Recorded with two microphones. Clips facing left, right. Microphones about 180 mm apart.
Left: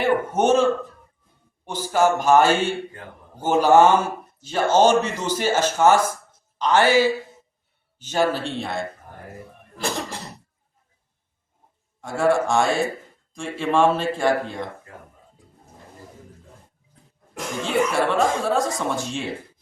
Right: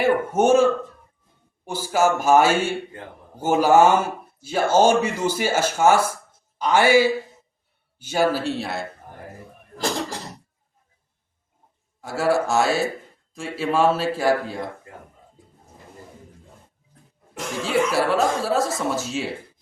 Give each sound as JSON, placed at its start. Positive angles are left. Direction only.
{"t": 0.0, "sound": "speech", "side_deg": -10}
{"t": 12.0, "sound": "speech", "side_deg": -5}
{"t": 17.3, "sound": "speech", "side_deg": -5}